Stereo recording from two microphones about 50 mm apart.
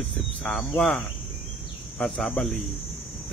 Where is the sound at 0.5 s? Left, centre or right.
Centre.